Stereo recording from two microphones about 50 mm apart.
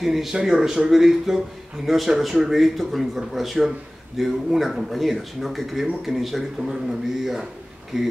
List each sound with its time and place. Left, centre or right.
0.0 s speech: centre